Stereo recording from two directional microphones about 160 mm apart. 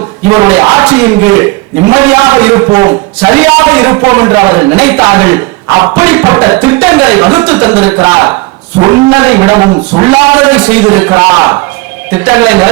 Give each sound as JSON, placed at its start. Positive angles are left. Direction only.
{"t": 0.3, "sound": "a man's voice", "side_deg": -25}
{"t": 10.5, "sound": "a man's voice", "side_deg": -10}